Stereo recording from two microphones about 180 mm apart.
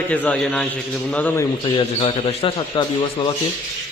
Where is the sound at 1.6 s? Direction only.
25° left (ahead or behind).